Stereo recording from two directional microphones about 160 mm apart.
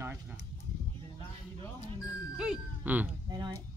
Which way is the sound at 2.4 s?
5° right (ahead or behind).